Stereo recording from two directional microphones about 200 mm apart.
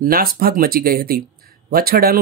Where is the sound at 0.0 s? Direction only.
45° right (ahead or behind).